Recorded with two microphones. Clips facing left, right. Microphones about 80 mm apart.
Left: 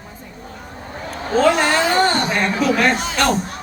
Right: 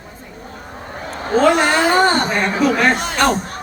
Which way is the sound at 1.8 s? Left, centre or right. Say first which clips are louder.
Right 3 dB; right.